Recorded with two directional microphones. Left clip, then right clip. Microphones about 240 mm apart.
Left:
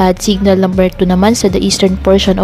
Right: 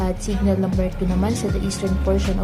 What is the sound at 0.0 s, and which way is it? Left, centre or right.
A woman's voice, left.